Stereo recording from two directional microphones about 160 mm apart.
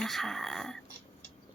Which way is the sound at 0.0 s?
Centre (ahead or behind).